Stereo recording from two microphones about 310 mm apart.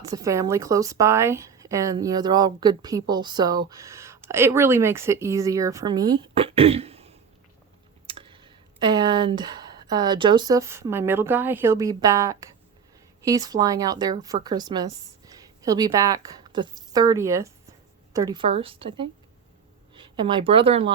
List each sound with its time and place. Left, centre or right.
0.0 s a woman's voice: centre